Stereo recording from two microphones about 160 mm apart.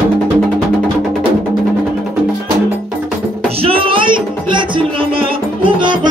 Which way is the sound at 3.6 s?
35° right (ahead or behind).